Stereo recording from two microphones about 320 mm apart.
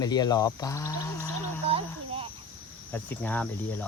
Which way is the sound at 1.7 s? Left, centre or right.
Centre.